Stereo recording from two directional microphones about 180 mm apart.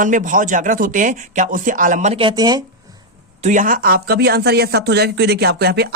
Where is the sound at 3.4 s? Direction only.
45° right (ahead or behind).